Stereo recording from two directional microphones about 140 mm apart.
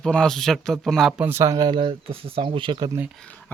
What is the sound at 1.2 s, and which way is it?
Speech, 15° right (ahead or behind).